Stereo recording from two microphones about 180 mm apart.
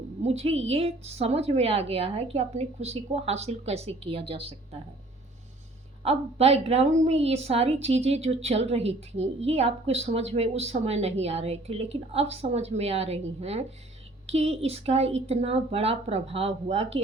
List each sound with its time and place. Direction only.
0.2 s a woman's voice: 35° right (ahead or behind)
6.1 s a woman's voice: 35° right (ahead or behind)